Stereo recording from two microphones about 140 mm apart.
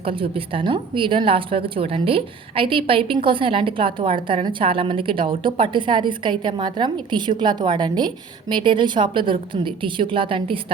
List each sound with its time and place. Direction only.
0.0 s a woman's voice: 40° right (ahead or behind)